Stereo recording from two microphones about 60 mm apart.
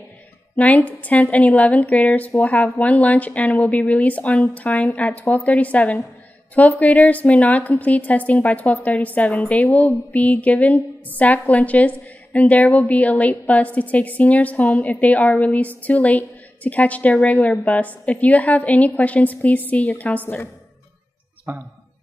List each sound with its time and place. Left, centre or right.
0.6 s a woman's voice: left
21.5 s speech: right